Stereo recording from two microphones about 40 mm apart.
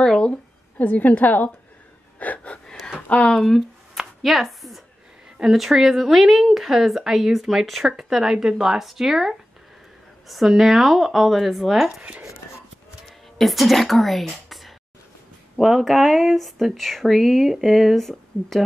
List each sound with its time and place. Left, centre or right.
0.0 s a sound: centre
0.7 s a woman's voice: left
2.1 s gasp: left
3.1 s speech: left
4.2 s a sound: centre
5.4 s speech: centre
8.2 s speech: centre
13.0 s speech: centre
15.6 s speech: centre